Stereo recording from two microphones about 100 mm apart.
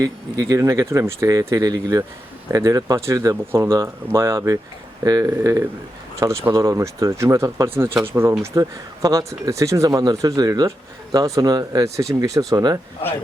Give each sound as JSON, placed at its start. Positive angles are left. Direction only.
{"t": 0.0, "sound": "speech", "side_deg": -35}